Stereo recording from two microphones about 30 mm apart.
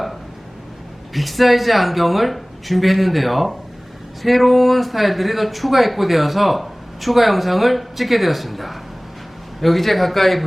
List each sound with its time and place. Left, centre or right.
1.1 s speech: centre